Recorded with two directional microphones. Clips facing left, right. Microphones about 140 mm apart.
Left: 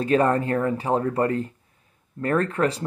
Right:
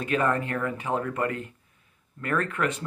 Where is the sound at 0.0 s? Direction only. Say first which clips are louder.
Left 6 dB; 35° left (ahead or behind).